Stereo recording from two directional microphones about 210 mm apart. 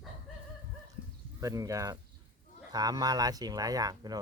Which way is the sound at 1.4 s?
15° right (ahead or behind).